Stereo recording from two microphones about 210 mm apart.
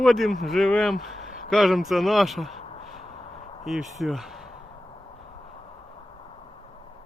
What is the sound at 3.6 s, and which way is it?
Speech, centre (ahead or behind).